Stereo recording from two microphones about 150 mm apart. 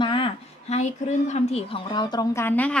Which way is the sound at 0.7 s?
50° left (ahead or behind).